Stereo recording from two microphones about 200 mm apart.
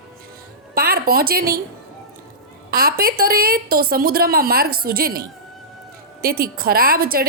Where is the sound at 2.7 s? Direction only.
50° right (ahead or behind).